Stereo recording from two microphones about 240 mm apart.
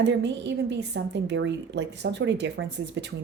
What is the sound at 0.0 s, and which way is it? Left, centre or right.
Speech, right.